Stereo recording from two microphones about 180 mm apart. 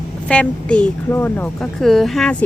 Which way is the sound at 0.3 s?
5° left (ahead or behind).